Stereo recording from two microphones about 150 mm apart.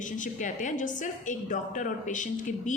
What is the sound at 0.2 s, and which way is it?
A woman's voice, 55° left (ahead or behind).